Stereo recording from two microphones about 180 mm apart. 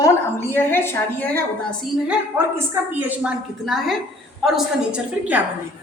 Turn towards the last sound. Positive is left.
turn(degrees=-5)  # may be behind; listen again after turning